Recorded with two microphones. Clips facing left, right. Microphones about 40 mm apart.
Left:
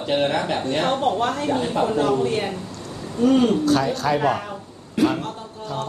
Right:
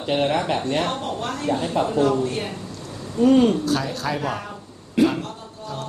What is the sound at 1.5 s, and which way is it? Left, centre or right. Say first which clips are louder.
Speech: left 1 dB; centre.